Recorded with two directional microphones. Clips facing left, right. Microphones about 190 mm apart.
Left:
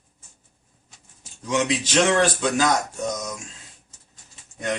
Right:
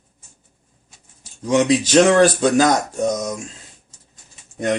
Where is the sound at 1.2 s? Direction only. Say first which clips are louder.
Right 7 dB; 35° right (ahead or behind).